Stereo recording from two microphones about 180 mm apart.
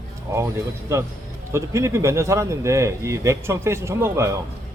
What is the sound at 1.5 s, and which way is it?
A man's voice, 15° right (ahead or behind).